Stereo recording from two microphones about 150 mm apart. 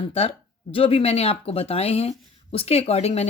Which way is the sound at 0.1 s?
40° left (ahead or behind).